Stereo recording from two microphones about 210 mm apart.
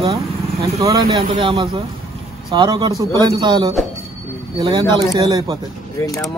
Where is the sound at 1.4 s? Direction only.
25° right (ahead or behind).